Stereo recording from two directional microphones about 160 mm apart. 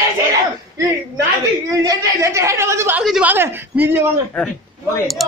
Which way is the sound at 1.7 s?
20° right (ahead or behind).